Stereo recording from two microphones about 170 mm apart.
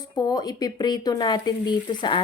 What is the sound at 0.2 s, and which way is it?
Speech, 25° left (ahead or behind).